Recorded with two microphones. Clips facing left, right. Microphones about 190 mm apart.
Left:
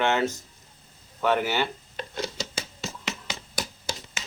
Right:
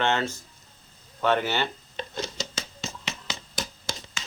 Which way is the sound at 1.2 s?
10° left (ahead or behind).